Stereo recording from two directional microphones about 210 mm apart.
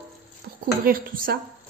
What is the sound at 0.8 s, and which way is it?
Speech, 45° right (ahead or behind).